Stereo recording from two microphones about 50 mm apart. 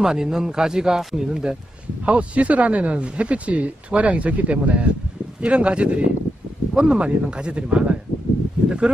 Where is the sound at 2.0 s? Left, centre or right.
Right.